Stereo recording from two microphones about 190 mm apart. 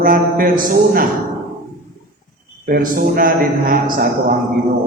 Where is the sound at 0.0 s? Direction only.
50° right (ahead or behind).